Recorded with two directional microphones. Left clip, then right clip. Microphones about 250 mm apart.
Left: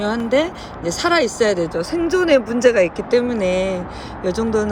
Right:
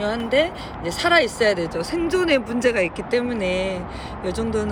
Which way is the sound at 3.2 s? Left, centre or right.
Left.